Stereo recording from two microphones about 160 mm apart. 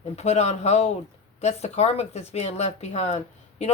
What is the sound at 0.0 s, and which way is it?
Speech, 45° left (ahead or behind).